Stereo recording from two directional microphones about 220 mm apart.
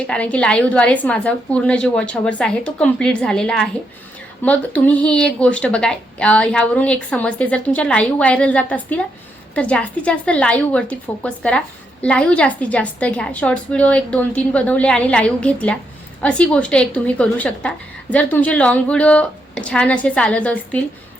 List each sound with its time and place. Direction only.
0.1 s a woman's voice: 5° left (ahead or behind)